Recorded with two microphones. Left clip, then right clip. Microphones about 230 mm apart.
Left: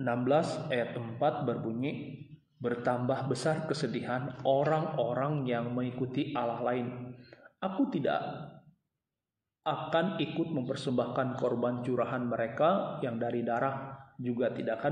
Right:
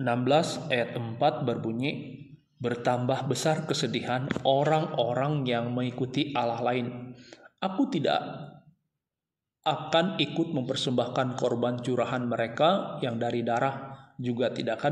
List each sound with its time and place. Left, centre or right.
0.0 s a man's voice: right
9.6 s a man's voice: right